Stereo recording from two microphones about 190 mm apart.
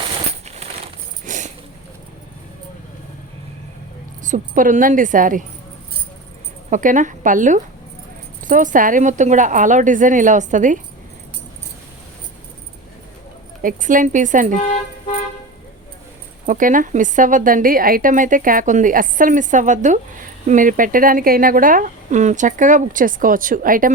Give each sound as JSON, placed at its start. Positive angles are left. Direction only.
{"t": 0.1, "sound": "a sound", "side_deg": -35}
{"t": 4.2, "sound": "speech", "side_deg": -45}
{"t": 6.7, "sound": "a woman's voice", "side_deg": -40}
{"t": 13.6, "sound": "speech", "side_deg": -45}
{"t": 16.5, "sound": "speech", "side_deg": -45}